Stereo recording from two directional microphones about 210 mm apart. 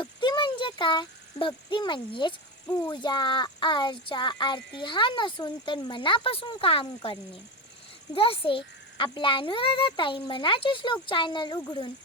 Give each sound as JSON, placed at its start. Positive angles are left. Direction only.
{"t": 0.0, "sound": "a child's voice", "side_deg": 20}